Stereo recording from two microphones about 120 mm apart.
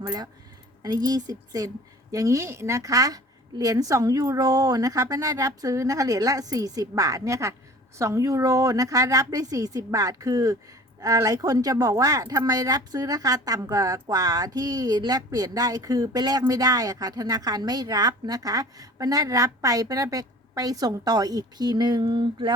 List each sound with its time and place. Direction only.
0.8 s a woman's voice: 30° right (ahead or behind)